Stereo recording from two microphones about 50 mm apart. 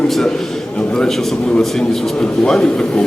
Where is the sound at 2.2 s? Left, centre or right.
Centre.